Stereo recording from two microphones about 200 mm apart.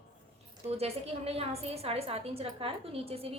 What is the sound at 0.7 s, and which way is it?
A woman's voice, 30° right (ahead or behind).